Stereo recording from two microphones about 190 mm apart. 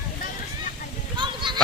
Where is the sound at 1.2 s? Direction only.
25° right (ahead or behind).